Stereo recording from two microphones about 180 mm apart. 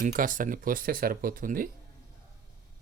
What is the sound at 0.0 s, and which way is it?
Speech, 45° right (ahead or behind).